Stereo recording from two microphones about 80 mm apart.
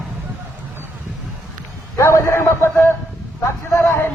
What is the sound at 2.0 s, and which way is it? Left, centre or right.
A man's voice, left.